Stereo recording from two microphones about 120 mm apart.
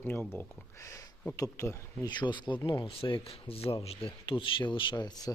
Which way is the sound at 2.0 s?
40° left (ahead or behind).